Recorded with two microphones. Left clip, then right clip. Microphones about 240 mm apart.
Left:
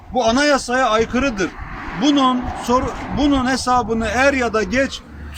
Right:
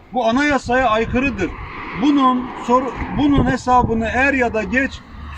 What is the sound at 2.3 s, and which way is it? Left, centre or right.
Speech, centre.